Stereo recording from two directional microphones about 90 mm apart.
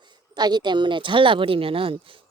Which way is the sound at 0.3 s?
50° right (ahead or behind).